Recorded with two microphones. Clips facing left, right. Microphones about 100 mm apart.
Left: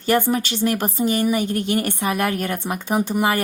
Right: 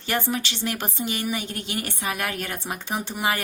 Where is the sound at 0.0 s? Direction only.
45° left (ahead or behind).